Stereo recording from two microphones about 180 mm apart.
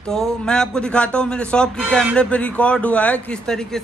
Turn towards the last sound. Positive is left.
turn(degrees=5)  # may be behind; listen again after turning